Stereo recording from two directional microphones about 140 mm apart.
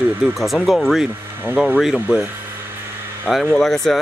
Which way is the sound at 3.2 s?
5° left (ahead or behind).